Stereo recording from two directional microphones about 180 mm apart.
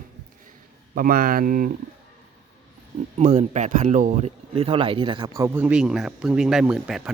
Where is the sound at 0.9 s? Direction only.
50° right (ahead or behind).